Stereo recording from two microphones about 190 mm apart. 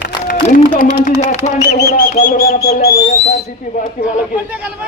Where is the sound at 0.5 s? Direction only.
45° left (ahead or behind).